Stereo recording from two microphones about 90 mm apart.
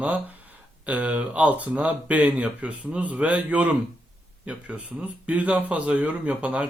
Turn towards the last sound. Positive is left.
turn(degrees=-15)  # may be behind; listen again after turning